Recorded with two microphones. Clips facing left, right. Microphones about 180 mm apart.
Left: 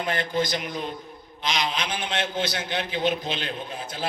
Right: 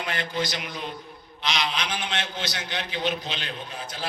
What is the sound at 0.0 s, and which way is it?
A man's voice, 50° left (ahead or behind).